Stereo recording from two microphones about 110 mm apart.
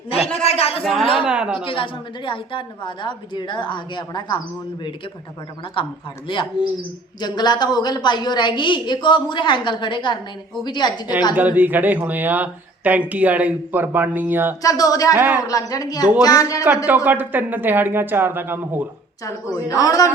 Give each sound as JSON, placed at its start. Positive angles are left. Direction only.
{"t": 0.4, "sound": "a sound", "side_deg": 65}
{"t": 1.2, "sound": "speech", "side_deg": -10}
{"t": 1.6, "sound": "a woman's voice", "side_deg": 50}
{"t": 5.8, "sound": "a woman's voice", "side_deg": 55}
{"t": 11.3, "sound": "speech", "side_deg": -15}
{"t": 14.6, "sound": "a woman's voice", "side_deg": 30}
{"t": 15.1, "sound": "speech", "side_deg": -15}
{"t": 15.4, "sound": "a woman's voice", "side_deg": 35}
{"t": 16.8, "sound": "speech", "side_deg": -15}
{"t": 19.5, "sound": "a woman's voice", "side_deg": 30}